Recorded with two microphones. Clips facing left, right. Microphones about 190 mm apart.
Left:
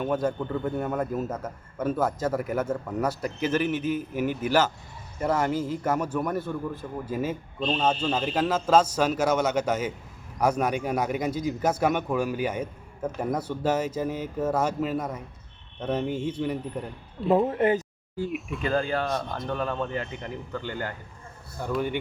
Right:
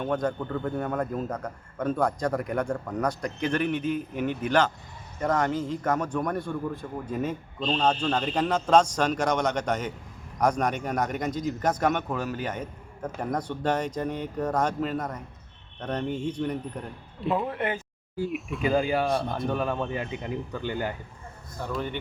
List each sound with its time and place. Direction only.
0.0 s a man's voice: 5° left (ahead or behind)
17.2 s speech: 40° left (ahead or behind)
18.3 s speech: centre (ahead or behind); by 20.9 s 15° right (ahead or behind)
21.6 s a man's voice: 10° left (ahead or behind)